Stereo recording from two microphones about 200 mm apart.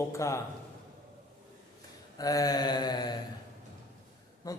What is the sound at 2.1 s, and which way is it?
Mantra, 20° left (ahead or behind).